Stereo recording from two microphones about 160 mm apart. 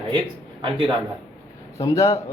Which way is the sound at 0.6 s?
30° right (ahead or behind).